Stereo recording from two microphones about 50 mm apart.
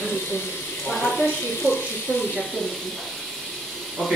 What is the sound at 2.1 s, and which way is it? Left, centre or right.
Speech, left.